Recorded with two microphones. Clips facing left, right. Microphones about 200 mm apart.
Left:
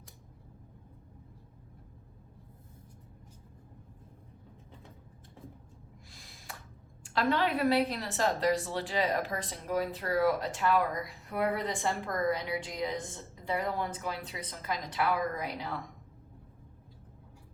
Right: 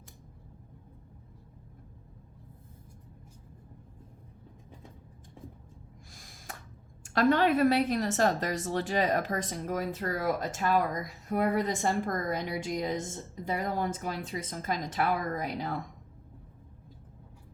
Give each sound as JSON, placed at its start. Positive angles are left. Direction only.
{"t": 6.1, "sound": "gasp", "side_deg": -45}
{"t": 7.0, "sound": "a woman's voice", "side_deg": -50}